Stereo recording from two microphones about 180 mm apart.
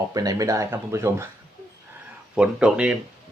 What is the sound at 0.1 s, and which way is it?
Speech, 20° right (ahead or behind).